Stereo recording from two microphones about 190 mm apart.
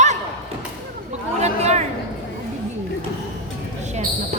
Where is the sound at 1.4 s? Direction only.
35° right (ahead or behind).